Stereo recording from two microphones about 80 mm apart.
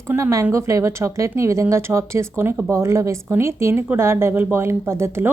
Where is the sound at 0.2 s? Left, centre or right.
Right.